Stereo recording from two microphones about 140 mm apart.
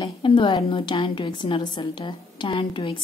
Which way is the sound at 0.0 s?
35° left (ahead or behind).